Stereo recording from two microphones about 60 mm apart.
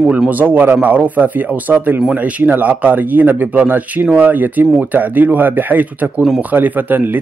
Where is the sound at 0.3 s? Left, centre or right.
Right.